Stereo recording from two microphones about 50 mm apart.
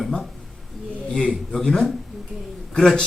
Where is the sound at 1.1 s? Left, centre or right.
Centre.